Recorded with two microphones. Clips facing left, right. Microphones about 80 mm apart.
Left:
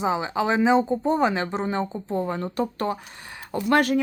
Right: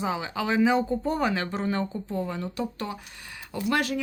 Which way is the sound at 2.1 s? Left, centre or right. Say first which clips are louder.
Left 6 dB; left.